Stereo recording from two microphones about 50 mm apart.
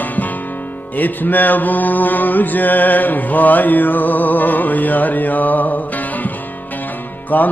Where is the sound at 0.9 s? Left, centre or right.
Left.